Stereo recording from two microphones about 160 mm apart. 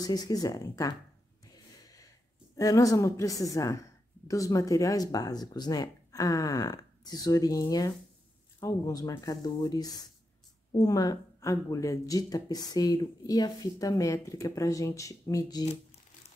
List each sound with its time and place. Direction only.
0.0 s speech: 25° left (ahead or behind)
2.5 s speech: 20° left (ahead or behind)